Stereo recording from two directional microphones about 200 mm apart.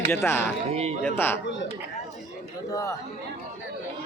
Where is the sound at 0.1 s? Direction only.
10° left (ahead or behind).